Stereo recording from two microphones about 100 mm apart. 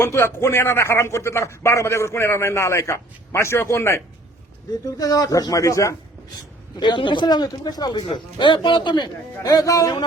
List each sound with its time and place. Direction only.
0.0 s speech: 25° left (ahead or behind)
6.7 s a man's voice: 50° left (ahead or behind)